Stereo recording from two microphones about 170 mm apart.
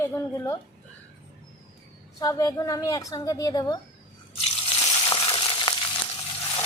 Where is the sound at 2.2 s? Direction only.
20° left (ahead or behind).